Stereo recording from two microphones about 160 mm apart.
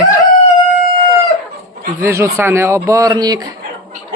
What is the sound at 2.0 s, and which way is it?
Speech, 15° right (ahead or behind).